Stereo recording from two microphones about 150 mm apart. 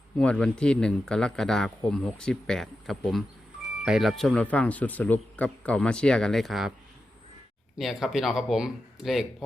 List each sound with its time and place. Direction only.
0.2 s speech: 5° left (ahead or behind)
7.8 s speech: centre (ahead or behind)